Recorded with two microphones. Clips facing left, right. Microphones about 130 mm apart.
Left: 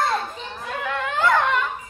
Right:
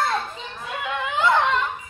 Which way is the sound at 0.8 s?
15° right (ahead or behind).